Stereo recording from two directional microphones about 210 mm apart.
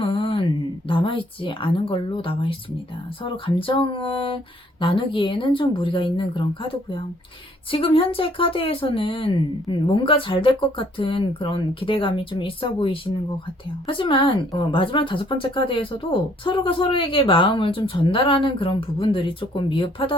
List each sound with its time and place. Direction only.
0.0 s mantra: 25° left (ahead or behind)
0.9 s speech: 25° left (ahead or behind)